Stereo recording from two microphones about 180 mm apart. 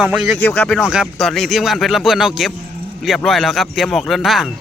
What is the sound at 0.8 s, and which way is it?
Speech, 5° right (ahead or behind).